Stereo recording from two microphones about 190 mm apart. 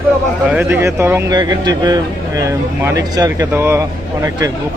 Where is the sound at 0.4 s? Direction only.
10° right (ahead or behind).